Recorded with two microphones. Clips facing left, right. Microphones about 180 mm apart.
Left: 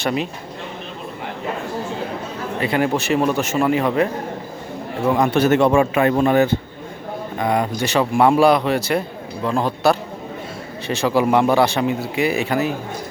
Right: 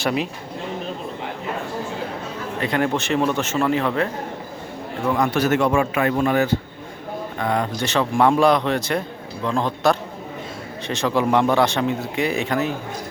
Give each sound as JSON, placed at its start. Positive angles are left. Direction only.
{"t": 0.0, "sound": "speech", "side_deg": 0}
{"t": 2.6, "sound": "a man's voice", "side_deg": 5}
{"t": 5.1, "sound": "a man's voice", "side_deg": 25}
{"t": 7.3, "sound": "a man's voice", "side_deg": 10}